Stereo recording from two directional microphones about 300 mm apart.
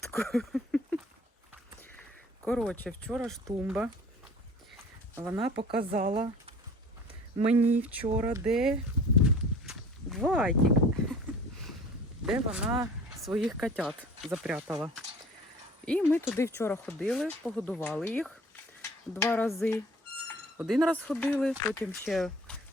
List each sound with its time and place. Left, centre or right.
0.1 s a sound: centre
2.4 s speech: centre
5.1 s speech: centre
5.5 s a woman's voice: centre
7.3 s a woman's voice: centre
7.6 s speech: centre
8.0 s a woman's voice: right
8.4 s speech: centre
9.2 s walk: centre
12.2 s speech: centre